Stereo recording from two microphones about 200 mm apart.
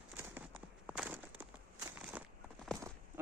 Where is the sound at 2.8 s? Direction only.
15° right (ahead or behind).